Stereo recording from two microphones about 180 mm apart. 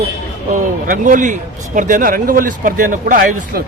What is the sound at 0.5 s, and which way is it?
A man's voice, 45° right (ahead or behind).